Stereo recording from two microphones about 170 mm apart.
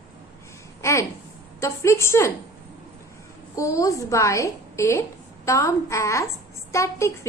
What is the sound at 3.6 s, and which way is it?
A woman's voice, 20° left (ahead or behind).